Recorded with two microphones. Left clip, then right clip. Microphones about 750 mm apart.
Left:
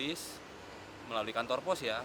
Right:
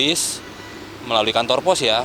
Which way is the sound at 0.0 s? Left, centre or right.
Right.